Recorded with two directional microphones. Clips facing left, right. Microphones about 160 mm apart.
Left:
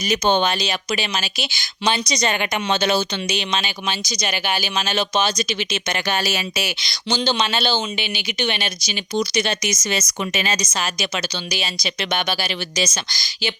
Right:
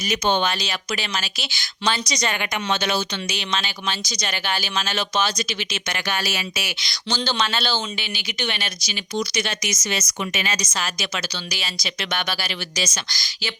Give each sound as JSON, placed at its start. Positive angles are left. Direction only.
{"t": 0.1, "sound": "speech", "side_deg": 30}